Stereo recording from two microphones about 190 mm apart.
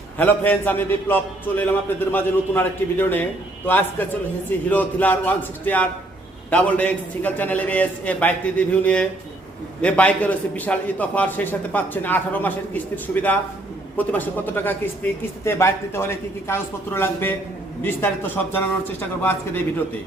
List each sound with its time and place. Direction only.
0.2 s a man's voice: 10° left (ahead or behind)
13.9 s a man's voice: 10° left (ahead or behind)